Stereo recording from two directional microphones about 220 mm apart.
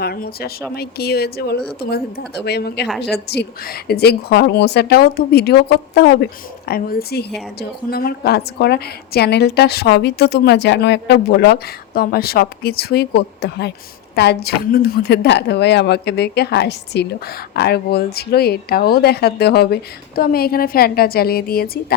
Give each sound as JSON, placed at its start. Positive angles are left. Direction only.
{"t": 0.0, "sound": "a woman's voice", "side_deg": 45}